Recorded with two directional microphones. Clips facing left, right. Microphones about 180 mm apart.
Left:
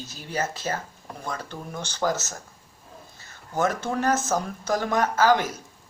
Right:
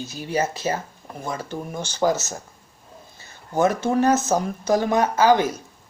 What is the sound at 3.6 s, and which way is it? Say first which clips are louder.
Speech: right 6 dB; 15° right (ahead or behind).